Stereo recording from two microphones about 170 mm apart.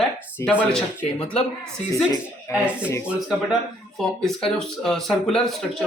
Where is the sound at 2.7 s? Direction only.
5° right (ahead or behind).